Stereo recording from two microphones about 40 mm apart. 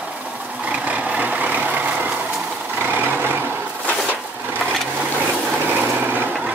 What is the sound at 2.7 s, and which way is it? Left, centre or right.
Vehicle, right.